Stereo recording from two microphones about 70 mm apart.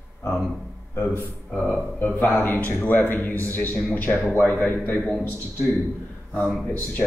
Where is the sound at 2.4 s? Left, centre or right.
Left.